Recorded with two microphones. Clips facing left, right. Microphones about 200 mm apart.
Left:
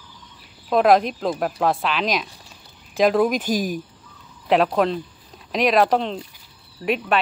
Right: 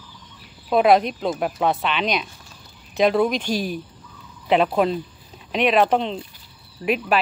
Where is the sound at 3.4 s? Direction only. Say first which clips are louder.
Left 2 dB; 45° left (ahead or behind).